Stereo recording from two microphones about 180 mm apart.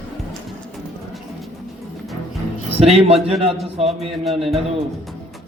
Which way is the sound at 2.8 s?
35° right (ahead or behind).